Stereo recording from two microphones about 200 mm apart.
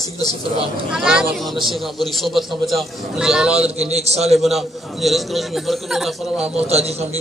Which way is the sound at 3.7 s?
30° right (ahead or behind).